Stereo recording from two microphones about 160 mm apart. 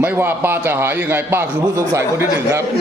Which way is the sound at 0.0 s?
10° right (ahead or behind).